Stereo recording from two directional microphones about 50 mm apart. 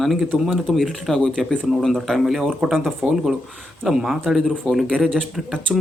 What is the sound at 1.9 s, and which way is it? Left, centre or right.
Speech, centre.